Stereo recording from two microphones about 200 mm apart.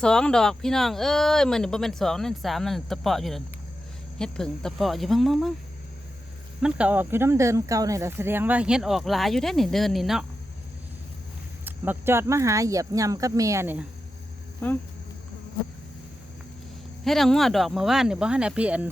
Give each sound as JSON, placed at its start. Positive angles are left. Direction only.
{"t": 0.0, "sound": "speech", "side_deg": 5}
{"t": 6.6, "sound": "speech", "side_deg": -5}
{"t": 11.6, "sound": "speech", "side_deg": -10}
{"t": 14.6, "sound": "speech", "side_deg": 10}
{"t": 17.0, "sound": "speech", "side_deg": 0}